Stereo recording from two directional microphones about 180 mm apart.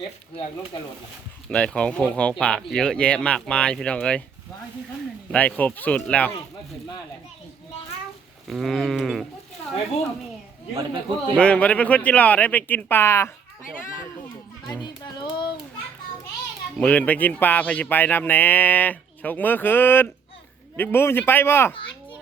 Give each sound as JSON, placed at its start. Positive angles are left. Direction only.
{"t": 1.5, "sound": "speech", "side_deg": 5}
{"t": 5.3, "sound": "speech", "side_deg": 5}
{"t": 8.4, "sound": "speech", "side_deg": 0}
{"t": 11.3, "sound": "speech", "side_deg": 5}
{"t": 15.0, "sound": "music", "side_deg": 25}
{"t": 16.7, "sound": "speech", "side_deg": 5}